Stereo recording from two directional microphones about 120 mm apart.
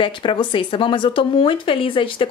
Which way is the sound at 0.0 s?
45° left (ahead or behind).